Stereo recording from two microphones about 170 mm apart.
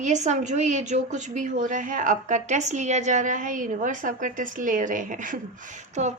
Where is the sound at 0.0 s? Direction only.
45° right (ahead or behind).